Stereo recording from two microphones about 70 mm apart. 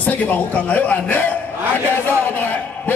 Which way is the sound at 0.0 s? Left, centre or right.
Left.